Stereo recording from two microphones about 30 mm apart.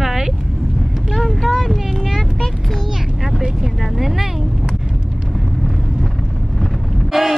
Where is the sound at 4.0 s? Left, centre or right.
Centre.